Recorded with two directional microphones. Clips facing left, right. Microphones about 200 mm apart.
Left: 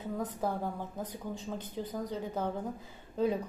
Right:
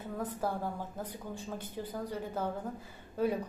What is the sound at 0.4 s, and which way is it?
Speech, 15° left (ahead or behind).